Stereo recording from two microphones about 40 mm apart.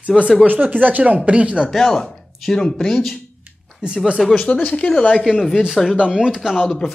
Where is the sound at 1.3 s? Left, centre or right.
Right.